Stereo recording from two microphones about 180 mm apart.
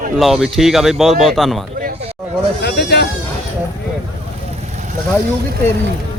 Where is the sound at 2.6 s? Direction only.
65° left (ahead or behind).